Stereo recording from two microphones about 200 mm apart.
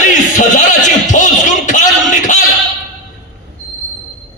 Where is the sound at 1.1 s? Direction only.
40° left (ahead or behind).